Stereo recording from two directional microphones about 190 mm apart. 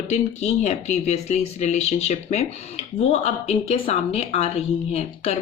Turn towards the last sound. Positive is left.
turn(degrees=30)  # may be behind; listen again after turning